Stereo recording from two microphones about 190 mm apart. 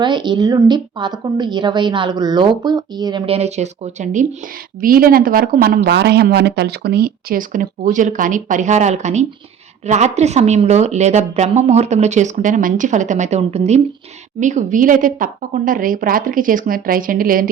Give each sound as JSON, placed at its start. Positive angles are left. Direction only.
{"t": 0.0, "sound": "a woman's voice", "side_deg": -25}